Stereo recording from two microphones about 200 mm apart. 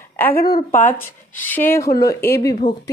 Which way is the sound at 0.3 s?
50° left (ahead or behind).